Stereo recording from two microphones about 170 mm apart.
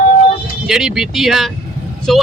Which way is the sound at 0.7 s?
5° right (ahead or behind).